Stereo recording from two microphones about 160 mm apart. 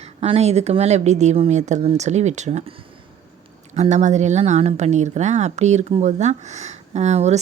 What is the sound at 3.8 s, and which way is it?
A woman's voice, 45° right (ahead or behind).